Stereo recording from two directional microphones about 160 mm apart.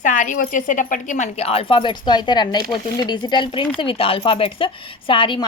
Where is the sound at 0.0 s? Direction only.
50° left (ahead or behind).